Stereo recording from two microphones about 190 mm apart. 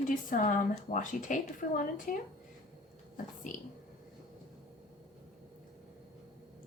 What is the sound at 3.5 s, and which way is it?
Speech, 45° left (ahead or behind).